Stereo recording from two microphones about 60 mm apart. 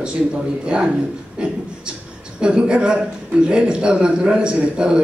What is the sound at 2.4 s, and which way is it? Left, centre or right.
Speech, centre.